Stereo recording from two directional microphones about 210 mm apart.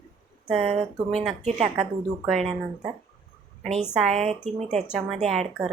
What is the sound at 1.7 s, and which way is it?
Speech, centre (ahead or behind).